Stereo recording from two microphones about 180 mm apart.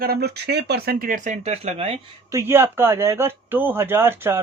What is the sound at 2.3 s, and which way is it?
Speech, 15° right (ahead or behind).